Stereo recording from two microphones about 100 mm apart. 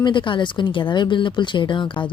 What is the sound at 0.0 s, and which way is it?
Speech, 50° left (ahead or behind).